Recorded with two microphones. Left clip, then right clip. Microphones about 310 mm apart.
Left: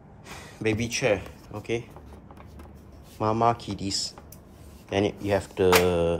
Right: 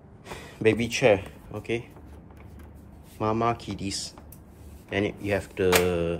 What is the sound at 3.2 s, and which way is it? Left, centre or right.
Speech, centre.